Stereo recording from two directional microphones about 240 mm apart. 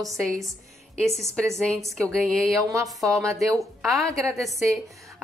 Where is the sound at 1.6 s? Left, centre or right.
Centre.